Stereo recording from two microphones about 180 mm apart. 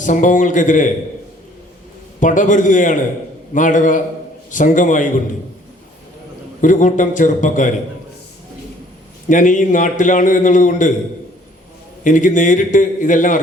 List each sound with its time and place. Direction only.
0.0 s a man's voice: 45° left (ahead or behind)
2.2 s a man's voice: 45° left (ahead or behind)
6.6 s a man's voice: 45° left (ahead or behind)
9.3 s a man's voice: 45° left (ahead or behind)
12.0 s a man's voice: 45° left (ahead or behind)